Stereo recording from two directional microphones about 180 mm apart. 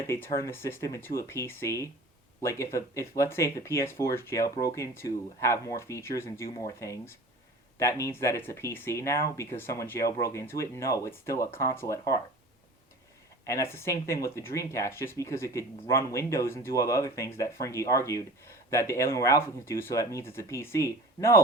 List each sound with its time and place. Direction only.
0.1 s speech: 15° left (ahead or behind)
13.4 s speech: 15° left (ahead or behind)